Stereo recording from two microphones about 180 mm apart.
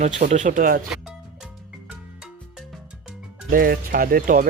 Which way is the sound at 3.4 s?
55° right (ahead or behind).